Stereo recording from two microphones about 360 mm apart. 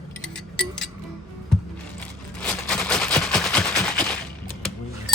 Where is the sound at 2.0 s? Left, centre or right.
Centre.